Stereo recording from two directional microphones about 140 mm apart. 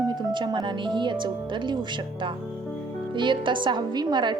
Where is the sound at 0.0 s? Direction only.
30° right (ahead or behind).